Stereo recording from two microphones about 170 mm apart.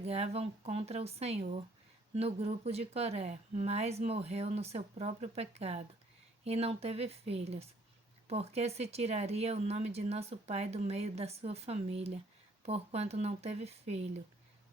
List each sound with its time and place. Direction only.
0.0 s speech: 40° right (ahead or behind)